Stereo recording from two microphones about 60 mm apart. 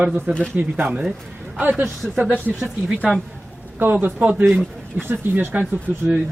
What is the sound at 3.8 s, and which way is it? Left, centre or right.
Speech, right.